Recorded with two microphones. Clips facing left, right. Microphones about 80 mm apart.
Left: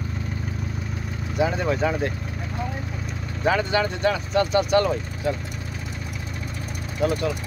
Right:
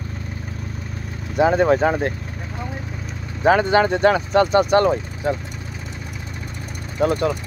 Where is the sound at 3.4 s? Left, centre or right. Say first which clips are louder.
Right 6 dB; right.